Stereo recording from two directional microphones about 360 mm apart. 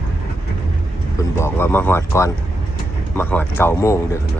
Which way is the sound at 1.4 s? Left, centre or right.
Centre.